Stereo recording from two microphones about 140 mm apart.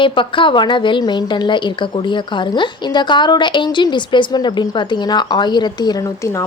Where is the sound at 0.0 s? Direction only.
35° left (ahead or behind).